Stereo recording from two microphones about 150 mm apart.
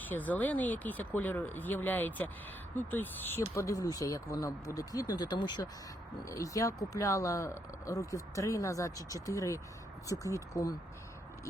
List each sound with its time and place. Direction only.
0.1 s speech: 10° left (ahead or behind)